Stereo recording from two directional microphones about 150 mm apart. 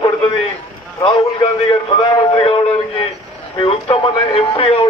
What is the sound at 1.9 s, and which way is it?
Speech, 30° left (ahead or behind).